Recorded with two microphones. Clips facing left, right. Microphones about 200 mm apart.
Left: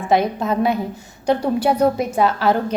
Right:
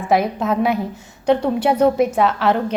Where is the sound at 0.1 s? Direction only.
5° right (ahead or behind).